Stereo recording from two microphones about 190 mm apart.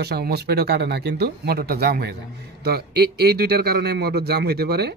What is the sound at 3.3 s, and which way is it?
Speech, 55° right (ahead or behind).